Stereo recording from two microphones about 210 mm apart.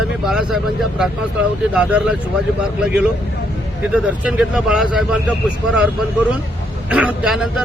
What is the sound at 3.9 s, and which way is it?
Speech, 5° right (ahead or behind).